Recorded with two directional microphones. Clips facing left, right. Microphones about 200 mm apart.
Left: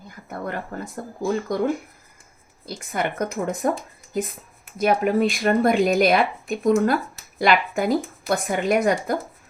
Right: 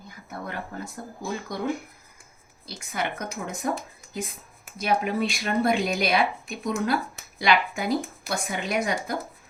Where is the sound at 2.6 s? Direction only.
55° left (ahead or behind).